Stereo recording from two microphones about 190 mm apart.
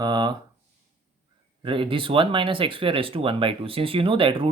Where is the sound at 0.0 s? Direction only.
25° right (ahead or behind).